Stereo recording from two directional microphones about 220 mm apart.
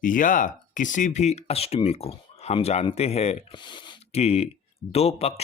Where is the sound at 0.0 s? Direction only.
35° left (ahead or behind).